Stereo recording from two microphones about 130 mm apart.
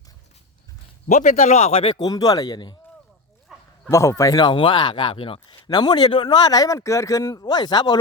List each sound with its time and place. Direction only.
1.0 s a man's voice: 75° left (ahead or behind); by 2.0 s 50° left (ahead or behind)
2.0 s speech: 30° left (ahead or behind)
3.5 s bow-wow: 5° right (ahead or behind)
3.8 s speech: 25° left (ahead or behind)